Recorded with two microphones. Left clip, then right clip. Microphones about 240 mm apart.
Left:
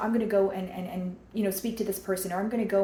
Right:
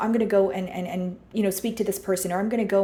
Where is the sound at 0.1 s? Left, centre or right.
Right.